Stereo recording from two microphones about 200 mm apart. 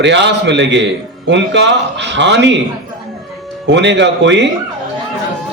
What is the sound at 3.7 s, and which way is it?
Speech, 60° right (ahead or behind).